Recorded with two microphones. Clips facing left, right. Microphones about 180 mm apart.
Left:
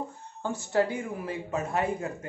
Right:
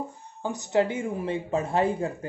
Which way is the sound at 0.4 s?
15° right (ahead or behind).